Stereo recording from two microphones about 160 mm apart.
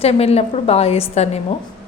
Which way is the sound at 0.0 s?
40° left (ahead or behind).